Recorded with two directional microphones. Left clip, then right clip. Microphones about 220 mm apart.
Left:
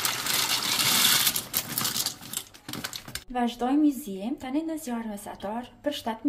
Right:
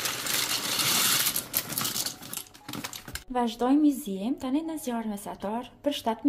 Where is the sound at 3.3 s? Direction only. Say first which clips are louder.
Right 1 dB; 25° right (ahead or behind).